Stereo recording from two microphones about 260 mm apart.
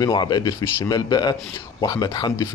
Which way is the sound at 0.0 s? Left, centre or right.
Centre.